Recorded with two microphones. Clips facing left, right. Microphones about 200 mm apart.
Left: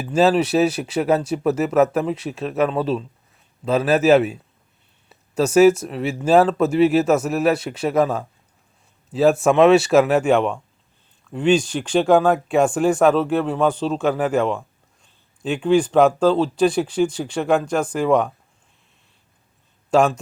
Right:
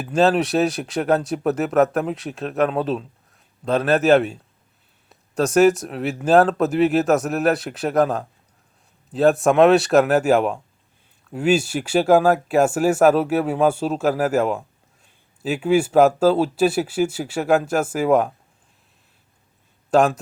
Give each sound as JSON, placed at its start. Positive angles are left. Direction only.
{"t": 0.0, "sound": "speech", "side_deg": 0}
{"t": 19.9, "sound": "a man's voice", "side_deg": 0}